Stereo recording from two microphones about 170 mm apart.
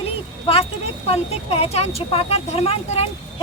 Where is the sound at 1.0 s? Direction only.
35° left (ahead or behind).